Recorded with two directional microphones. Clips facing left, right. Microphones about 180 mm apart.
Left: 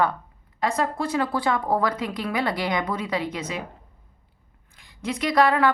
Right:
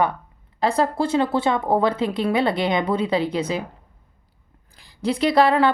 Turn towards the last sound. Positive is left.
turn(degrees=-30)  # may be behind; listen again after turning